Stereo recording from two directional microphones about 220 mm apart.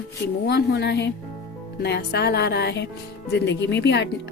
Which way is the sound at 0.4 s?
50° left (ahead or behind).